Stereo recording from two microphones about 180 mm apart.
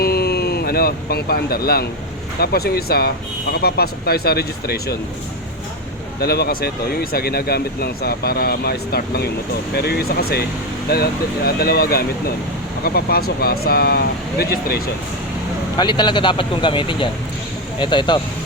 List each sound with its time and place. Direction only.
0.0 s a sound: 60° left (ahead or behind)
2.4 s speech: 60° left (ahead or behind)
6.1 s speech: 60° left (ahead or behind)
15.8 s speech: 25° left (ahead or behind)